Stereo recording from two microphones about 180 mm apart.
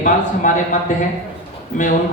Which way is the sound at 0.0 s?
45° left (ahead or behind).